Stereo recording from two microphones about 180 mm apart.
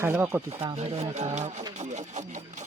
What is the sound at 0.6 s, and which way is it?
Speech, 35° right (ahead or behind).